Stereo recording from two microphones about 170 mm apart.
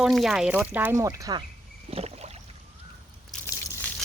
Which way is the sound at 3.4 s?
15° left (ahead or behind).